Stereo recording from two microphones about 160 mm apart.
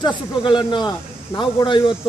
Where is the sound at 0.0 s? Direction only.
30° left (ahead or behind).